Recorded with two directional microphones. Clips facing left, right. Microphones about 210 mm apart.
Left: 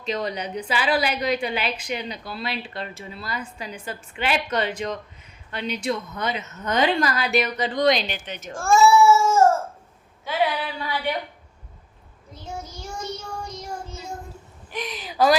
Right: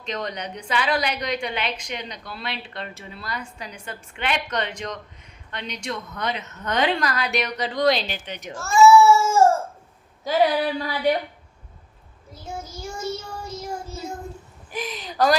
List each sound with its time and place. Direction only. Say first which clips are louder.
0.0 s a woman's voice: left 3 dB; 5° left (ahead or behind)
8.1 s a woman's voice: even; 15° right (ahead or behind)
8.5 s speech: left 5 dB; 50° left (ahead or behind)
10.2 s a sound: right 4 dB; 40° right (ahead or behind)
12.3 s child singing: right 1 dB; 5° right (ahead or behind)
14.7 s a woman's voice: right 1 dB; centre (ahead or behind)